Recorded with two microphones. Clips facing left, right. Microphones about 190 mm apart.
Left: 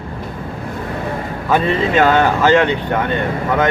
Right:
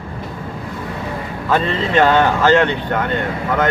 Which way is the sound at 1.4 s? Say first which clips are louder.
Left 2 dB; 10° left (ahead or behind).